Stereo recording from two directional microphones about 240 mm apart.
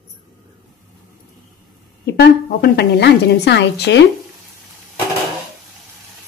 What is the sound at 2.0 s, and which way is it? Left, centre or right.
A woman's voice, left.